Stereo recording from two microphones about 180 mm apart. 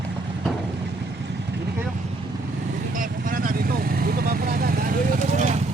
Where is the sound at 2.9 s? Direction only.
50° right (ahead or behind).